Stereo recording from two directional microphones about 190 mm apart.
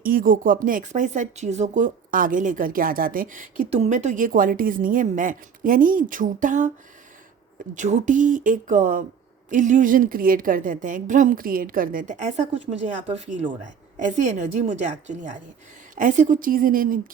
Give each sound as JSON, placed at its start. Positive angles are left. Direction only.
{"t": 0.0, "sound": "speech", "side_deg": -50}
{"t": 7.8, "sound": "speech", "side_deg": -40}
{"t": 13.1, "sound": "speech", "side_deg": -30}
{"t": 13.9, "sound": "a woman's voice", "side_deg": -40}